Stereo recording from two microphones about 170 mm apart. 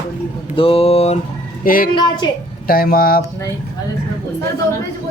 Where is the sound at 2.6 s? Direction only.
60° left (ahead or behind).